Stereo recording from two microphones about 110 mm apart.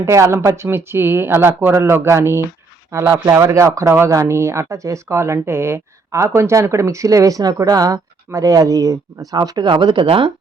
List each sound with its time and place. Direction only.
0.0 s speech: 25° right (ahead or behind); by 10.3 s 50° right (ahead or behind)